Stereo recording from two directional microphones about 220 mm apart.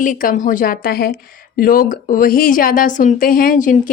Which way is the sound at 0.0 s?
35° left (ahead or behind).